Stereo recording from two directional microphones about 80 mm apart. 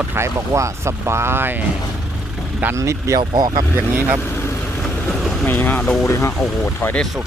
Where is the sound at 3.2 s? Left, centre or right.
Right.